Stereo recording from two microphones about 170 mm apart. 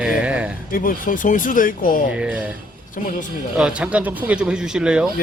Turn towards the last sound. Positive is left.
turn(degrees=-5)  # may be behind; listen again after turning